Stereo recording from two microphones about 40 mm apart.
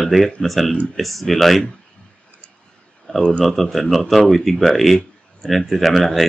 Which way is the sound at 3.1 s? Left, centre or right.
Left.